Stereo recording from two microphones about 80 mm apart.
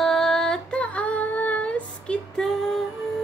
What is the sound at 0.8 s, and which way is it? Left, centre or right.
Child singing, centre.